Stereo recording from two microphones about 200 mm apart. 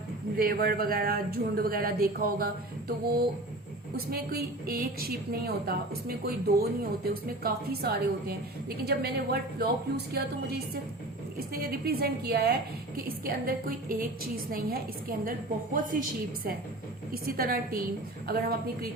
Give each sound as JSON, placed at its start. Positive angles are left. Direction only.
{"t": 0.3, "sound": "a woman's voice", "side_deg": -45}
{"t": 3.9, "sound": "a woman's voice", "side_deg": -50}